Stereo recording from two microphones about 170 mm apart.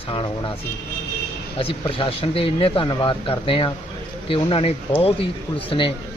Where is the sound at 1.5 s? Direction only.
35° left (ahead or behind).